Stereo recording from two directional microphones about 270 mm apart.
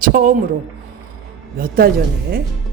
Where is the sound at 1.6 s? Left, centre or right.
Right.